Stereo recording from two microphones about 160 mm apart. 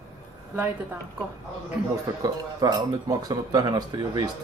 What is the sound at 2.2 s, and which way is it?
Speech, 20° right (ahead or behind).